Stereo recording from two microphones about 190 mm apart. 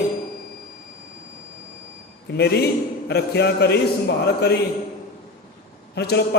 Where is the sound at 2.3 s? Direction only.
60° left (ahead or behind).